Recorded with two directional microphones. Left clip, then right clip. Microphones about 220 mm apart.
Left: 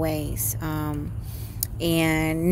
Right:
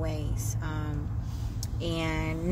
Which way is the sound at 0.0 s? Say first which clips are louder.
Left 9 dB; 45° left (ahead or behind).